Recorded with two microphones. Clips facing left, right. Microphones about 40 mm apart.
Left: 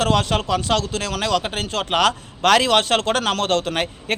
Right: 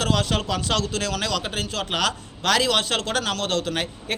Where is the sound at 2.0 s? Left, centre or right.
Left.